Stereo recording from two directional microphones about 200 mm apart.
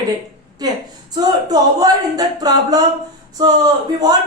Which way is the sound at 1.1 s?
20° right (ahead or behind).